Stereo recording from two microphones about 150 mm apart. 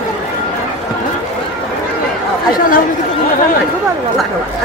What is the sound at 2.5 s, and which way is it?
Chatter, 65° left (ahead or behind).